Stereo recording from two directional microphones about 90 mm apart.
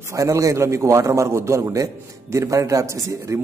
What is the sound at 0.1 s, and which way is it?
A man's voice, 35° right (ahead or behind).